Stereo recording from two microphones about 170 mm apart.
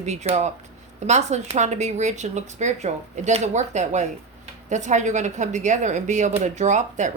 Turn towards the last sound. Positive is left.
turn(degrees=-45)  # may be behind; listen again after turning